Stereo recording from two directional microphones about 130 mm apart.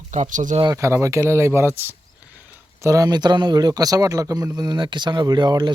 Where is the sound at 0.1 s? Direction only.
70° right (ahead or behind).